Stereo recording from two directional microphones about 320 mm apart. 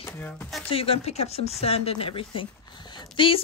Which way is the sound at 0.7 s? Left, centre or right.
Centre.